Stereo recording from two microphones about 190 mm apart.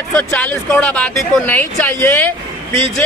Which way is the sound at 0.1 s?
5° left (ahead or behind).